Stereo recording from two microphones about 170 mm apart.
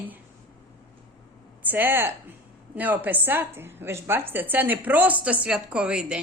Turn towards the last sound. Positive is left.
turn(degrees=-5)  # may be behind; listen again after turning